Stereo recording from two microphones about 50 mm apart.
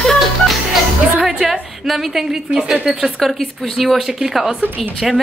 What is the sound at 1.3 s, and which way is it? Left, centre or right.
A woman's voice, centre.